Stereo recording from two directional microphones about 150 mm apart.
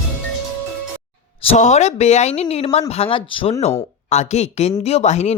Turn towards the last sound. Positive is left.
turn(degrees=50)  # may be behind; listen again after turning